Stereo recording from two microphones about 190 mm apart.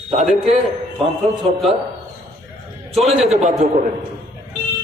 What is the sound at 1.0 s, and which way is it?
Speech, 30° right (ahead or behind).